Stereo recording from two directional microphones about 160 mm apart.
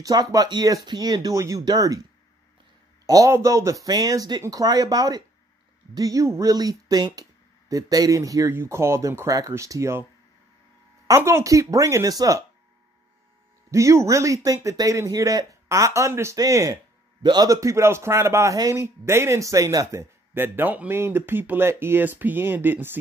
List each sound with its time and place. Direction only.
0.0 s speech: 25° right (ahead or behind)
3.1 s speech: 20° right (ahead or behind)
11.1 s speech: 15° right (ahead or behind)
13.7 s a man's voice: 20° right (ahead or behind)